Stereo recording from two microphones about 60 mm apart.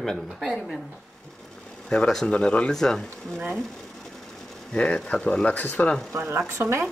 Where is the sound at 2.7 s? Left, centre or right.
Centre.